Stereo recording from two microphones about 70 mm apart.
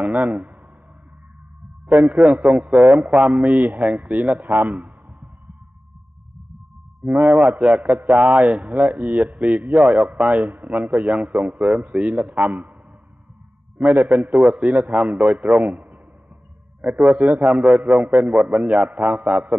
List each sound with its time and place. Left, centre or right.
1.9 s a man's voice: centre
7.2 s speech: right
13.7 s a man's voice: right
14.0 s a man's voice: centre